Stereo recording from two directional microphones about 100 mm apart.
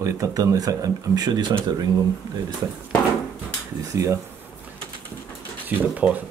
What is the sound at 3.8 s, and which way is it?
Speech, 30° right (ahead or behind).